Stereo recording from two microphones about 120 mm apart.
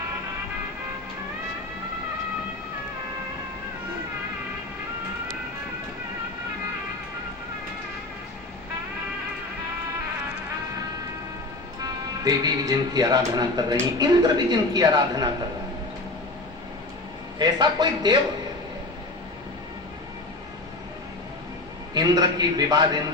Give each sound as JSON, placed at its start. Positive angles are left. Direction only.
{"t": 11.8, "sound": "a woman's voice", "side_deg": -35}
{"t": 17.3, "sound": "a woman's voice", "side_deg": -35}
{"t": 21.9, "sound": "a woman's voice", "side_deg": -35}